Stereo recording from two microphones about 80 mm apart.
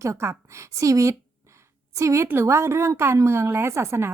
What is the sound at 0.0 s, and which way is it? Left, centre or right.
A woman's voice, right.